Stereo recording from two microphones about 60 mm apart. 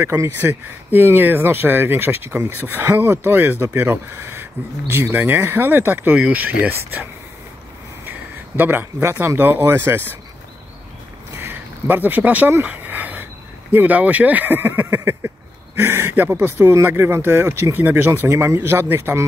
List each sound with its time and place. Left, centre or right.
0.0 s speech: right
0.4 s speech: right
8.5 s speech: right
11.9 s speech: right
18.3 s speech: right